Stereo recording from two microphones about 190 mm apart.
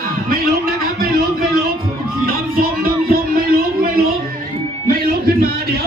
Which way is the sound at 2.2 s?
50° right (ahead or behind).